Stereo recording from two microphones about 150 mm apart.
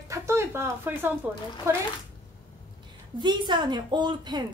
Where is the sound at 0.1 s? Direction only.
20° right (ahead or behind).